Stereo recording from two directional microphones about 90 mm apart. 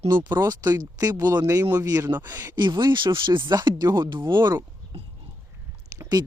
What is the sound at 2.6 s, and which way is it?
Speech, 50° right (ahead or behind).